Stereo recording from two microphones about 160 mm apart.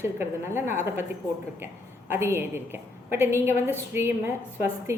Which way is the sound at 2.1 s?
15° right (ahead or behind).